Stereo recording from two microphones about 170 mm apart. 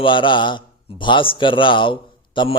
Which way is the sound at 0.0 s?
30° left (ahead or behind).